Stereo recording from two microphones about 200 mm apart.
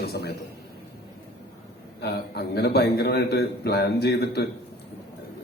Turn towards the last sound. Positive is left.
turn(degrees=55)  # may be behind; listen again after turning